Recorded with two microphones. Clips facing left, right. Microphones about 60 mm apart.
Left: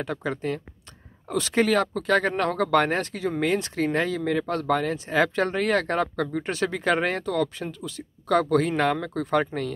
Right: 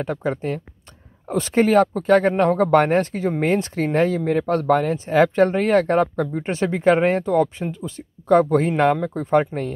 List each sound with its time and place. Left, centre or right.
0.0 s speech: right